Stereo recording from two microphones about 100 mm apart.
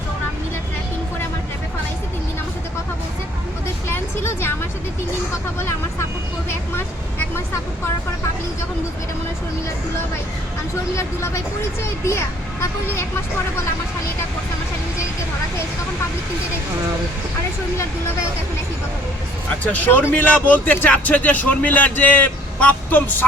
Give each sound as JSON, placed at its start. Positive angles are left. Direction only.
{"t": 3.8, "sound": "a sound", "side_deg": 25}
{"t": 10.9, "sound": "speech", "side_deg": 30}
{"t": 19.6, "sound": "speech", "side_deg": 15}